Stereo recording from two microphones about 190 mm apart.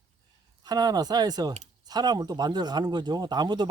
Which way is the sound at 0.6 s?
20° right (ahead or behind).